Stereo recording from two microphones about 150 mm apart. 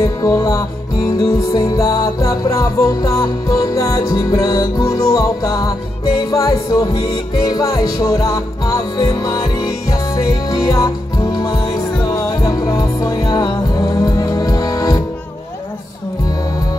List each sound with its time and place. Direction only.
0.0 s music: 20° left (ahead or behind)